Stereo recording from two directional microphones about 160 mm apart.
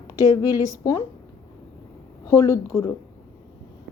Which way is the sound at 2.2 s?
20° left (ahead or behind).